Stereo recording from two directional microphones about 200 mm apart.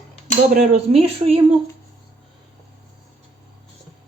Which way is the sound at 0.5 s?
35° right (ahead or behind).